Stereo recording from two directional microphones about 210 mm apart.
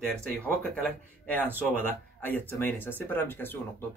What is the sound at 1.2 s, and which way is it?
Speech, 5° left (ahead or behind).